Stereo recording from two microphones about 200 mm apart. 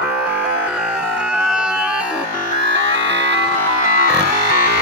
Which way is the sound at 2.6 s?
65° right (ahead or behind).